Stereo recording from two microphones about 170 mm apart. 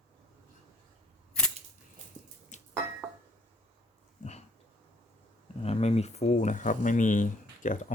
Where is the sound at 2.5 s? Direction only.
45° left (ahead or behind).